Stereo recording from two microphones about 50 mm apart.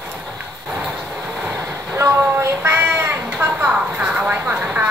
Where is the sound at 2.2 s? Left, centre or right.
Right.